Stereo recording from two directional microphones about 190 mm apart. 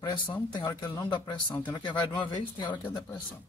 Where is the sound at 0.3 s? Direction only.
25° left (ahead or behind).